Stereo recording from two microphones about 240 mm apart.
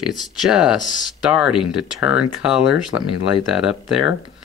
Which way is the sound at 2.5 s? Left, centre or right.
Left.